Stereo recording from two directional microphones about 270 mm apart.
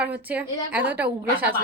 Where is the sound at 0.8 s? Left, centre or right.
Right.